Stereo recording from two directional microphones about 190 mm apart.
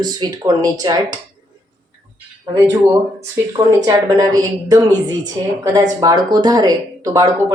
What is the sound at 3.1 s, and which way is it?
Speech, 20° right (ahead or behind).